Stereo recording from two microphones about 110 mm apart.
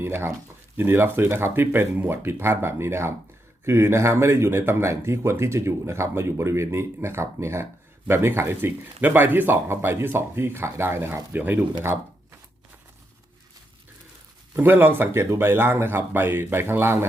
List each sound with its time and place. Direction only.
0.0 s speech: 20° right (ahead or behind)
14.5 s speech: 20° right (ahead or behind)